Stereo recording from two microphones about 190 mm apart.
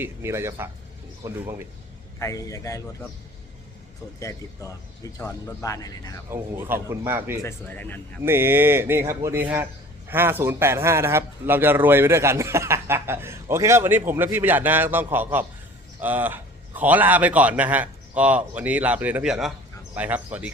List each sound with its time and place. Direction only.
0.0 s a man's voice: 15° right (ahead or behind)
2.1 s a man's voice: 15° left (ahead or behind)
4.2 s a man's voice: 15° left (ahead or behind)
6.3 s a man's voice: 10° right (ahead or behind)
7.4 s a man's voice: 10° left (ahead or behind)
8.2 s a man's voice: 10° right (ahead or behind)